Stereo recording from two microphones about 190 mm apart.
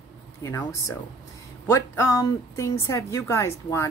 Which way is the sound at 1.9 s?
15° left (ahead or behind).